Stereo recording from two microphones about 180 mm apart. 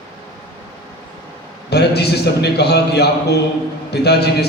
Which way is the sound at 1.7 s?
65° left (ahead or behind).